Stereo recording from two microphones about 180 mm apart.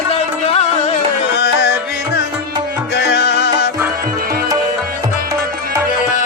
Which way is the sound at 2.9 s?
70° left (ahead or behind).